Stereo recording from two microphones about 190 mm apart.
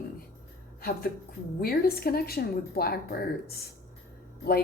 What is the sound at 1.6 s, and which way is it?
A woman's voice, 55° left (ahead or behind).